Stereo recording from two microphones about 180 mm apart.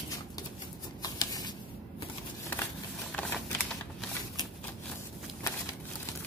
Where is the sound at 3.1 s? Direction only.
10° left (ahead or behind).